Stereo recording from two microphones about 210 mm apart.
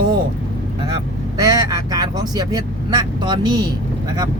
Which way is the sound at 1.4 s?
15° right (ahead or behind).